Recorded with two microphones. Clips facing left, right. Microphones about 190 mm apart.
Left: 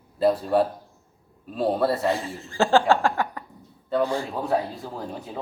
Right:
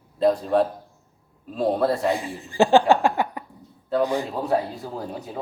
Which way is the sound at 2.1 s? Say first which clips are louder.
Right 1 dB; 15° right (ahead or behind).